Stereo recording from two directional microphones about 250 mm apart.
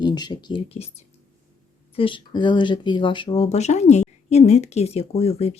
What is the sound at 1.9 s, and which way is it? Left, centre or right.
Speech, left.